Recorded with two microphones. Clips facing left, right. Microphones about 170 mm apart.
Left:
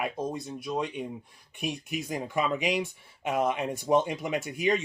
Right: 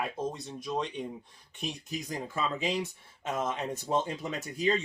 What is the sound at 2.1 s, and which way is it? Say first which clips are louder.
Speech: left 5 dB; 15° left (ahead or behind).